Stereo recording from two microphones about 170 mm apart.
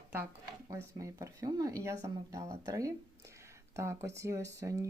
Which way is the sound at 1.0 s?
20° right (ahead or behind).